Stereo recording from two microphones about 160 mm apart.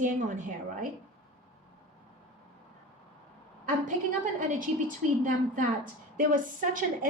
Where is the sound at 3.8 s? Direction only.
55° right (ahead or behind).